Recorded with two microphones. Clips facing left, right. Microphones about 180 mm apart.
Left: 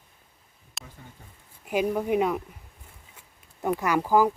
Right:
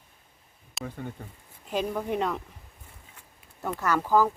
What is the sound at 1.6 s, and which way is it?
Speech, 10° left (ahead or behind).